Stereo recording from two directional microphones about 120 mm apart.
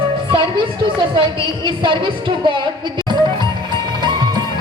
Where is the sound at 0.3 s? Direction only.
40° right (ahead or behind).